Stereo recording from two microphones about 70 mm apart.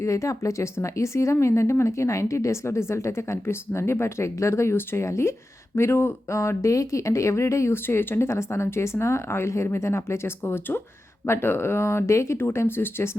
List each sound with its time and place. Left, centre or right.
0.0 s speech: left
12.5 s speech: left